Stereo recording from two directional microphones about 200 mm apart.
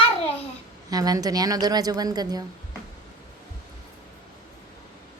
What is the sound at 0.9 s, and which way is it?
A woman's voice, 20° right (ahead or behind).